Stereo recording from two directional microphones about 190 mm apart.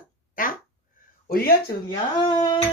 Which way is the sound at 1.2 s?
50° left (ahead or behind).